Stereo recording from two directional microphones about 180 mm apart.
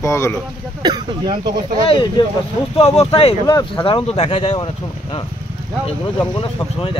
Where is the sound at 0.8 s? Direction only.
25° right (ahead or behind).